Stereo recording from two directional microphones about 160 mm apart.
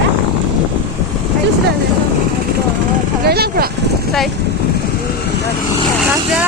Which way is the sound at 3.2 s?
80° right.